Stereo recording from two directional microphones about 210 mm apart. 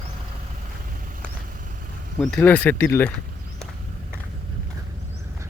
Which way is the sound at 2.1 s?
Centre (ahead or behind).